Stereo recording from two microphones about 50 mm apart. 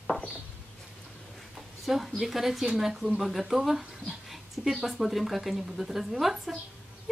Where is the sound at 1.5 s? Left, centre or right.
Centre.